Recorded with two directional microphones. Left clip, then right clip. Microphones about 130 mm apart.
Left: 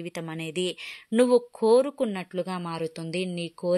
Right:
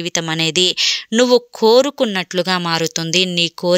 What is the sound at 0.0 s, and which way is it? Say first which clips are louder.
Speech: right 16 dB; 35° right (ahead or behind).